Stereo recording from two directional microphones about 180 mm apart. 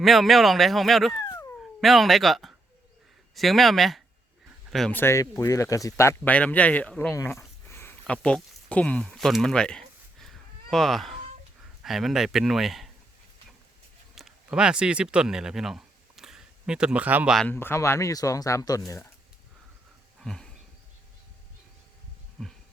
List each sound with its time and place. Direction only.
0.0 s speech: centre (ahead or behind)
4.9 s speech: 15° left (ahead or behind)
7.7 s a sound: 15° left (ahead or behind)
11.8 s speech: centre (ahead or behind)
14.2 s speech: 5° right (ahead or behind)
17.3 s speech: 10° left (ahead or behind)
20.1 s a sound: centre (ahead or behind)